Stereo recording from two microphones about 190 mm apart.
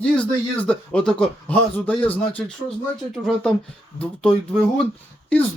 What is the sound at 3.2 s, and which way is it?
Speech, 5° left (ahead or behind).